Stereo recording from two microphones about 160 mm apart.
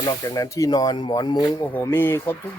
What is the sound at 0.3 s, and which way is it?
Speech, 20° left (ahead or behind).